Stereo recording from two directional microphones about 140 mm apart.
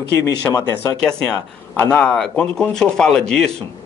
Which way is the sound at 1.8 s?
10° left (ahead or behind).